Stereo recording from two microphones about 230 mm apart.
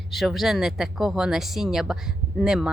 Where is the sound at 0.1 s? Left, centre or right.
Centre.